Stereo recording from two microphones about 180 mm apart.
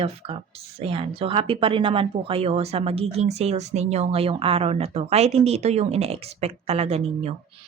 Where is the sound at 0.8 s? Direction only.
30° right (ahead or behind).